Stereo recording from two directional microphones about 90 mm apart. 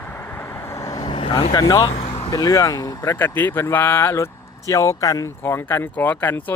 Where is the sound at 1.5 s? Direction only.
45° left (ahead or behind).